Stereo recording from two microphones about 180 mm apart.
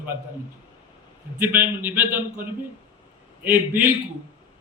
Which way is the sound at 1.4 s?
10° right (ahead or behind).